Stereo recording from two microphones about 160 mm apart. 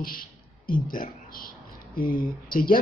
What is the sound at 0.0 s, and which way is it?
Speech, 60° left (ahead or behind).